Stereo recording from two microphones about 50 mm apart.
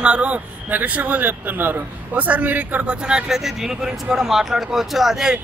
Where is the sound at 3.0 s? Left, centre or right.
Centre.